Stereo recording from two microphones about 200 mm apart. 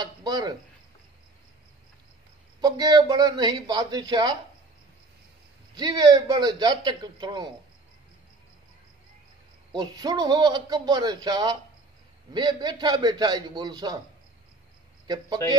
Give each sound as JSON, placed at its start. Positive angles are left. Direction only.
{"t": 0.0, "sound": "speech", "side_deg": -20}
{"t": 2.6, "sound": "speech", "side_deg": -20}
{"t": 5.8, "sound": "speech", "side_deg": -20}
{"t": 9.7, "sound": "speech", "side_deg": -20}
{"t": 15.0, "sound": "speech", "side_deg": -20}